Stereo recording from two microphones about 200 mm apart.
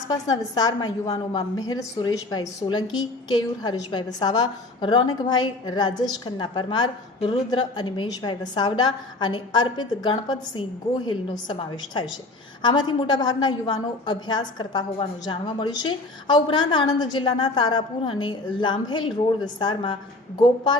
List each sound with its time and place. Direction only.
0.1 s a woman's voice: 20° left (ahead or behind)